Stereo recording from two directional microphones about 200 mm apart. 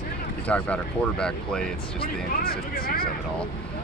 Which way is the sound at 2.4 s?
50° left (ahead or behind).